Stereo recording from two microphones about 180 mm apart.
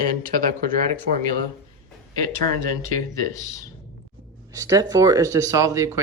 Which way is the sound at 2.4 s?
50° right (ahead or behind).